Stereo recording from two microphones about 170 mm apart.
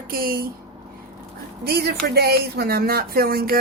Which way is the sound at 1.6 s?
70° right (ahead or behind).